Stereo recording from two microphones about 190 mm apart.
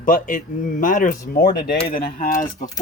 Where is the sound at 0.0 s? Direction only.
45° left (ahead or behind).